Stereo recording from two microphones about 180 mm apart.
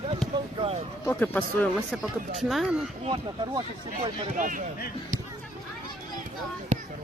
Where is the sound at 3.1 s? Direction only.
25° right (ahead or behind).